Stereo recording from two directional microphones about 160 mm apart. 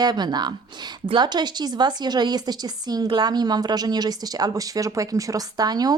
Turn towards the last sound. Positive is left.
turn(degrees=-25)  # may be behind; listen again after turning